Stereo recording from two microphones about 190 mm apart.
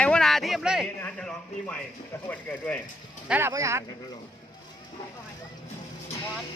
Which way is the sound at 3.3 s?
15° right (ahead or behind).